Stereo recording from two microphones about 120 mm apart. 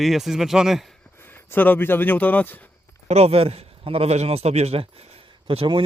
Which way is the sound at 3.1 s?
60° right (ahead or behind).